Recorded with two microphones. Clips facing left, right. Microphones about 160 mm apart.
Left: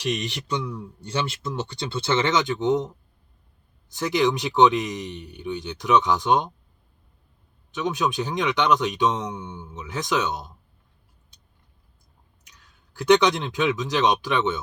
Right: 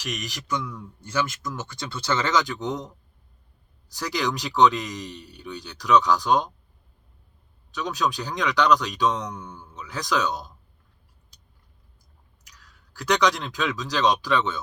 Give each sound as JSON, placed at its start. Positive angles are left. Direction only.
{"t": 0.0, "sound": "speech", "side_deg": 30}
{"t": 7.7, "sound": "speech", "side_deg": 20}
{"t": 12.5, "sound": "speech", "side_deg": 25}